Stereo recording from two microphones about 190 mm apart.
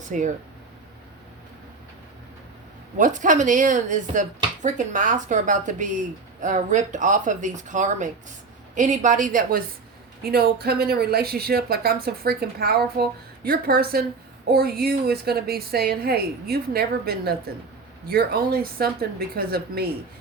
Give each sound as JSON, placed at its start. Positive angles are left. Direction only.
{"t": 0.1, "sound": "speech", "side_deg": -40}
{"t": 3.0, "sound": "a woman's voice", "side_deg": -40}